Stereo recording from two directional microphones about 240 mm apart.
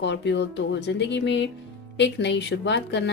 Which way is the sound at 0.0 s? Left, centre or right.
Left.